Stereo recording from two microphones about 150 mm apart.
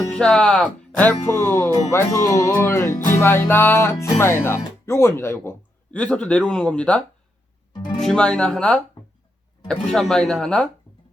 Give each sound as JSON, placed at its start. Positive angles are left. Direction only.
{"t": 0.1, "sound": "speech", "side_deg": 5}
{"t": 8.0, "sound": "speech", "side_deg": 5}
{"t": 9.9, "sound": "speech", "side_deg": 5}